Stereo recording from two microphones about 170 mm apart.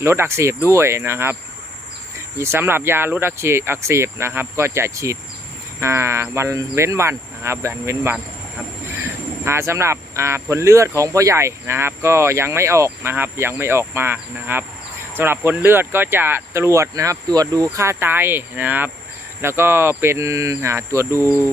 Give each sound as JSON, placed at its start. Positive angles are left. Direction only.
{"t": 0.0, "sound": "speech", "side_deg": -15}